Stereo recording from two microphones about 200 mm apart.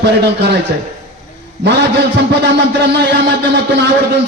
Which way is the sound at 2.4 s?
55° right (ahead or behind).